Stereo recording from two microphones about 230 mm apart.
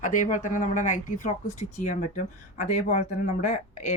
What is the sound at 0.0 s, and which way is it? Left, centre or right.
Speech, left.